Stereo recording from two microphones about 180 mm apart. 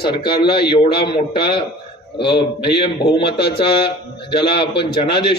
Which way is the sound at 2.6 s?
25° left (ahead or behind).